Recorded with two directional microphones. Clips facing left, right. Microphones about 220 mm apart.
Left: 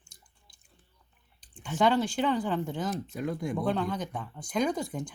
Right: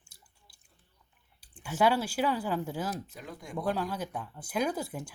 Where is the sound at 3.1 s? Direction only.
55° left (ahead or behind).